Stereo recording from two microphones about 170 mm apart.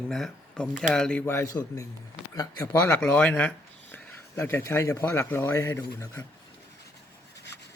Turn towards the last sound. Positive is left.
turn(degrees=15)  # may be behind; listen again after turning